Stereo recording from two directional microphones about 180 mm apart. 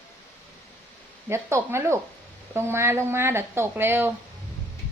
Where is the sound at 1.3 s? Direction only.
15° right (ahead or behind).